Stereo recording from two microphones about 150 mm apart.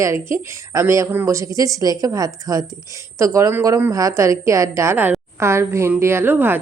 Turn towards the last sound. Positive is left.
turn(degrees=-15)  # may be behind; listen again after turning